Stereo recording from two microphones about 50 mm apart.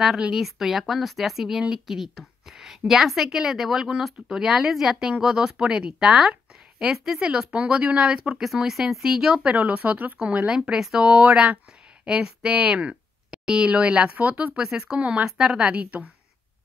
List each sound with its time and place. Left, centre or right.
0.3 s a woman's voice: centre; by 8.4 s right
8.6 s a woman's voice: centre
9.4 s speech: right
12.1 s speech: centre